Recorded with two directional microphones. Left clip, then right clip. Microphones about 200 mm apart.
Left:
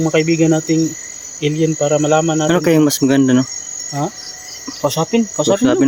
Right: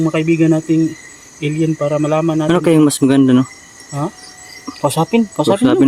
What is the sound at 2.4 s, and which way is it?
Speech, 10° right (ahead or behind).